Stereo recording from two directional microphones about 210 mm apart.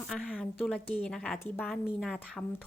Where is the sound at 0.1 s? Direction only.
Centre (ahead or behind).